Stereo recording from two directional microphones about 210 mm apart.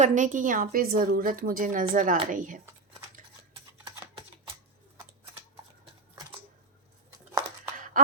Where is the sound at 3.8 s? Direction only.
25° right (ahead or behind).